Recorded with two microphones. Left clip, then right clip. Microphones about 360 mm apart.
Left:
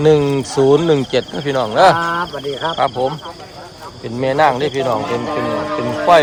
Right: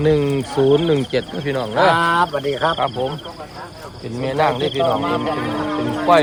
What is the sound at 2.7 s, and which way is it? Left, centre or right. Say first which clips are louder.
Speech: left 4 dB; centre.